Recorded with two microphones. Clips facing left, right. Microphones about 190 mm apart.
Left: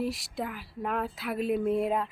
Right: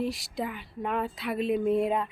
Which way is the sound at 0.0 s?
Centre (ahead or behind).